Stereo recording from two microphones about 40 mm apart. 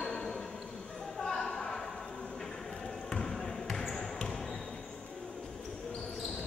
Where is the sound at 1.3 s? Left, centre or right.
Centre.